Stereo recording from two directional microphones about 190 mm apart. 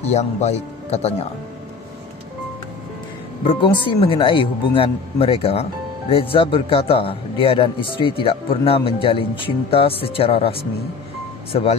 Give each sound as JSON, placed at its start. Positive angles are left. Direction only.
{"t": 0.1, "sound": "speech", "side_deg": 35}
{"t": 3.4, "sound": "speech", "side_deg": 25}